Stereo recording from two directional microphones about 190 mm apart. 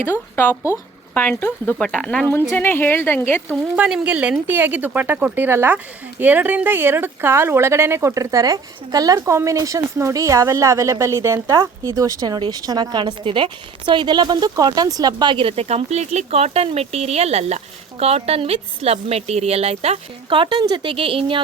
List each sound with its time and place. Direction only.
0.0 s speech: 10° left (ahead or behind)
3.8 s speech: 5° right (ahead or behind); by 21.4 s 25° right (ahead or behind)